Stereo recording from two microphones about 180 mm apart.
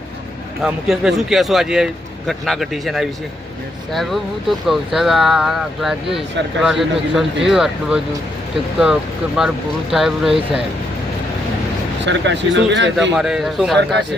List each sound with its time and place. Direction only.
0.6 s a man's voice: centre (ahead or behind)
12.0 s speech: 80° right
13.1 s a man's voice: centre (ahead or behind)